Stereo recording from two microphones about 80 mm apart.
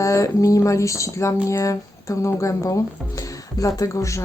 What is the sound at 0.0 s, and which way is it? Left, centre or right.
Speech, left.